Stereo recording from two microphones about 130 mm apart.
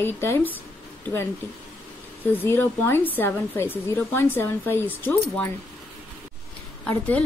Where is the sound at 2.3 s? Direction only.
15° left (ahead or behind).